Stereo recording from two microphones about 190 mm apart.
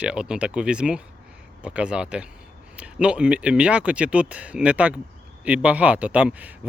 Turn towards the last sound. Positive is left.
turn(degrees=-5)  # may be behind; listen again after turning